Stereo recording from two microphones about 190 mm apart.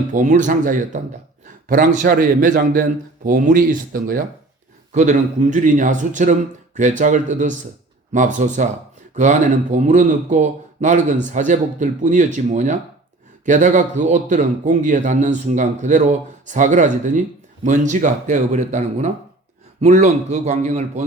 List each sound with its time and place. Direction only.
0.1 s a man's voice: 40° right (ahead or behind)